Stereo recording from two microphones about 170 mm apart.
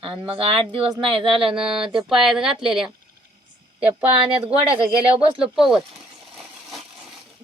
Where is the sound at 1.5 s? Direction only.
5° right (ahead or behind).